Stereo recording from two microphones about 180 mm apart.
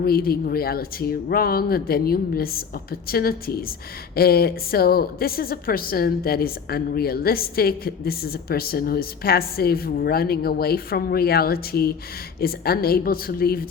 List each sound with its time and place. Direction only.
0.0 s a woman's voice: 55° left (ahead or behind)